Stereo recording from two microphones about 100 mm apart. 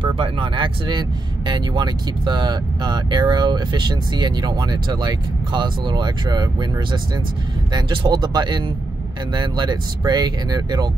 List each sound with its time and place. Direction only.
0.2 s speech: 55° right (ahead or behind)